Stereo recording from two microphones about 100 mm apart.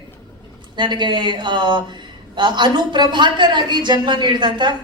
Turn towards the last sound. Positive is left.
turn(degrees=-50)  # may be behind; listen again after turning